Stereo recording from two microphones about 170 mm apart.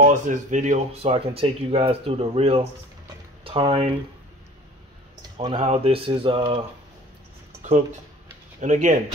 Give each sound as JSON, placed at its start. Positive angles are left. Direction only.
{"t": 0.0, "sound": "speech", "side_deg": -45}
{"t": 5.4, "sound": "speech", "side_deg": -30}
{"t": 8.5, "sound": "speech", "side_deg": -45}